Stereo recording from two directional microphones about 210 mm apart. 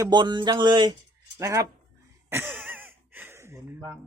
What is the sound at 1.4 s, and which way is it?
Speech, 15° right (ahead or behind).